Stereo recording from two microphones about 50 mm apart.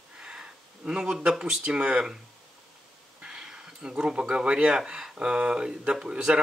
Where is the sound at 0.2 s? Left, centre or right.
Centre.